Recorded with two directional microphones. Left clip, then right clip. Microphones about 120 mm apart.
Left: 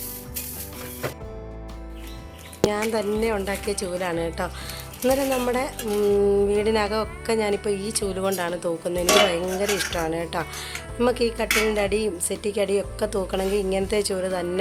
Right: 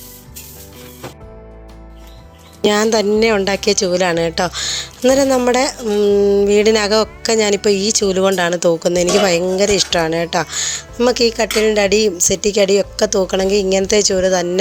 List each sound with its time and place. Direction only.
2.6 s a woman's voice: 90° right; by 5.7 s 60° right (ahead or behind)
5.9 s speech: 35° right (ahead or behind)
6.5 s speech: 60° right (ahead or behind)